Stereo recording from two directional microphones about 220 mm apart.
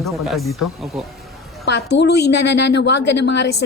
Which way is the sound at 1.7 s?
50° left (ahead or behind).